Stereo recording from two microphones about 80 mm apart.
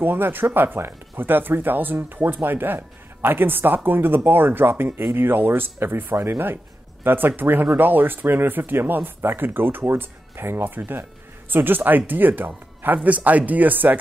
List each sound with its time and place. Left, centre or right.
0.0 s speech: right